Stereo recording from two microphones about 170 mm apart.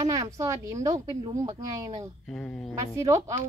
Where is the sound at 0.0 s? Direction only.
20° right (ahead or behind).